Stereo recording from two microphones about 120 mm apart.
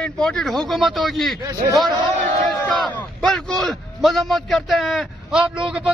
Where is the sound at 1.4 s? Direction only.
30° right (ahead or behind).